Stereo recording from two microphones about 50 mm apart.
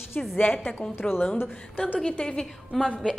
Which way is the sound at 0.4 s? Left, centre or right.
Left.